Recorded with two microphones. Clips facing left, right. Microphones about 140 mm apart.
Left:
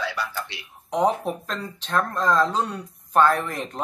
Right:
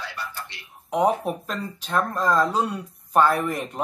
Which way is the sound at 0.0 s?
90° left.